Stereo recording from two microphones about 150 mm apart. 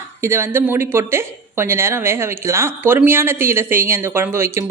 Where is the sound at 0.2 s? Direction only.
15° right (ahead or behind).